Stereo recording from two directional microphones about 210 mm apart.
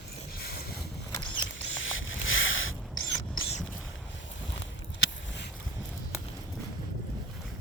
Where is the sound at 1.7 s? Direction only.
70° left (ahead or behind).